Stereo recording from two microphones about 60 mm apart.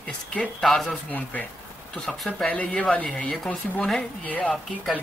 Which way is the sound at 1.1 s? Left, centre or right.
Left.